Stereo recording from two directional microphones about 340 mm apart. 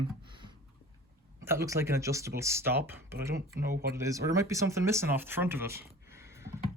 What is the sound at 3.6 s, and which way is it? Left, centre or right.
Speech, right.